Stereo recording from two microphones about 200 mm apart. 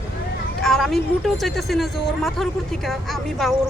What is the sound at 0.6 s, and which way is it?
Vehicle, centre (ahead or behind).